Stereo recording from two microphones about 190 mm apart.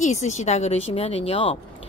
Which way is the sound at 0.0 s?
35° left (ahead or behind).